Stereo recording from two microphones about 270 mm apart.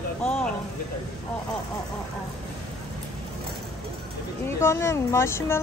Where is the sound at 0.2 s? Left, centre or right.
Centre.